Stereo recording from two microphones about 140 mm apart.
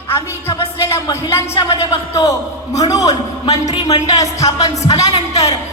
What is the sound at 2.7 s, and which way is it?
A man's voice, 25° left (ahead or behind).